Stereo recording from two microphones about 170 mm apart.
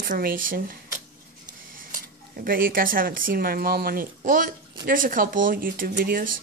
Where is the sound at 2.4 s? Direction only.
55° right (ahead or behind).